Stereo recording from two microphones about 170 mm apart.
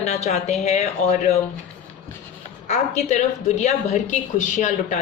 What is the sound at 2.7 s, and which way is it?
A woman's voice, 40° left (ahead or behind).